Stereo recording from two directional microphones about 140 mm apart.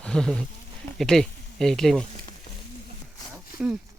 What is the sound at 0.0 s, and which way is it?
Speech, 5° left (ahead or behind).